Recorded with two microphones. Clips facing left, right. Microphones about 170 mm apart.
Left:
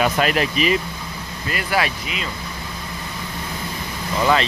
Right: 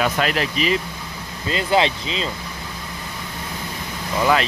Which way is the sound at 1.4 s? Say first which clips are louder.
Right 4 dB; 25° right (ahead or behind).